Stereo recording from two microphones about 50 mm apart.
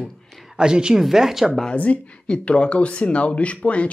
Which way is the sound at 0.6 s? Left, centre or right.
Centre.